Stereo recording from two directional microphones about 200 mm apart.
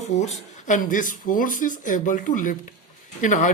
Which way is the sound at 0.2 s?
35° left (ahead or behind).